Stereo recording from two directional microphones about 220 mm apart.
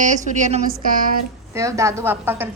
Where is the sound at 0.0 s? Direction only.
35° right (ahead or behind).